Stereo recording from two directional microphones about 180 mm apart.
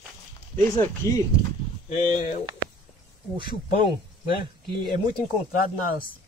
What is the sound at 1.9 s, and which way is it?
Speech, 45° left (ahead or behind).